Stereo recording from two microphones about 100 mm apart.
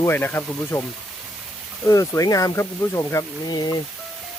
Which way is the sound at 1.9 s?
35° left (ahead or behind).